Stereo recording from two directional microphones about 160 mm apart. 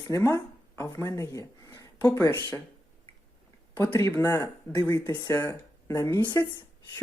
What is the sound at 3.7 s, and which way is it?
Speech, 15° left (ahead or behind).